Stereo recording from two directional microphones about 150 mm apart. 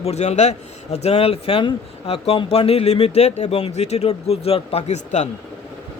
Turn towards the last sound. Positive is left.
turn(degrees=50)  # may be behind; listen again after turning